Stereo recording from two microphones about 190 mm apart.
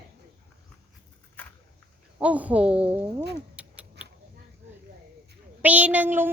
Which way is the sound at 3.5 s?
5° right (ahead or behind).